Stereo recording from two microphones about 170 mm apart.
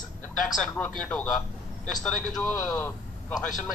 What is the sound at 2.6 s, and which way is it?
Speech, 20° left (ahead or behind).